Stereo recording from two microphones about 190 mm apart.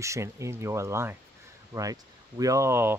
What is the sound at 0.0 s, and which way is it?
Speech, 15° right (ahead or behind).